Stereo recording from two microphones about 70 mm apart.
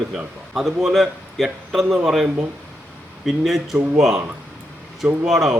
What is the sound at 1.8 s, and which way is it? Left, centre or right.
Speech, right.